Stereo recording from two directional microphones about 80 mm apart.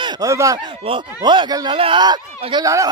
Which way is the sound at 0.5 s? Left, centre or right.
Right.